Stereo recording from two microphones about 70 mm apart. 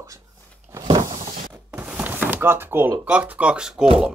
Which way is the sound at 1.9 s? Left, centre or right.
Centre.